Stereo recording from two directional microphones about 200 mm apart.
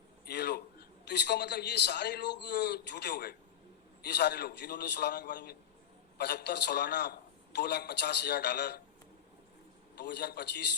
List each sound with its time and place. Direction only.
0.3 s a man's voice: 55° left (ahead or behind)
10.0 s a man's voice: 55° left (ahead or behind)